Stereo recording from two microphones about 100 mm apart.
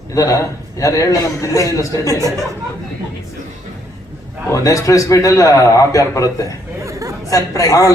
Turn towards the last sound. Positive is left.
turn(degrees=35)  # may be behind; listen again after turning